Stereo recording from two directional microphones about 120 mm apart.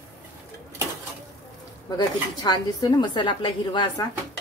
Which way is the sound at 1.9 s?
35° left (ahead or behind).